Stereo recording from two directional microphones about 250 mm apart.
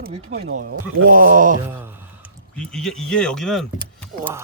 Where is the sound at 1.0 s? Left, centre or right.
Right.